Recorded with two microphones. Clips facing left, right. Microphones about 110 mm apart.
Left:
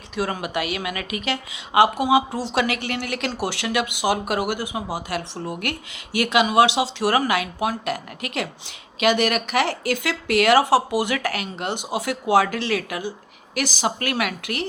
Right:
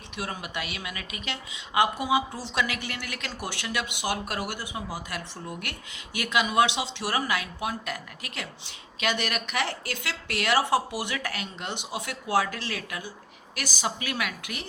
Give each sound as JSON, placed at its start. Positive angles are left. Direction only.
{"t": 0.3, "sound": "speech", "side_deg": 90}
{"t": 4.9, "sound": "speech", "side_deg": 80}
{"t": 13.6, "sound": "a woman's voice", "side_deg": 75}